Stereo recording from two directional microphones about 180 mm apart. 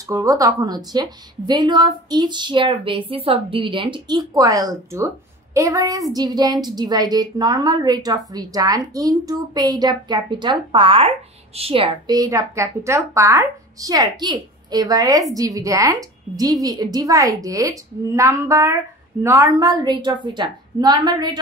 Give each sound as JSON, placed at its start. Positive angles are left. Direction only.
{"t": 0.0, "sound": "speech", "side_deg": -20}